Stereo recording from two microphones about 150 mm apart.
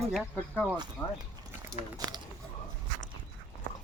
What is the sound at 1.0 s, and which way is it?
Speech, 30° left (ahead or behind).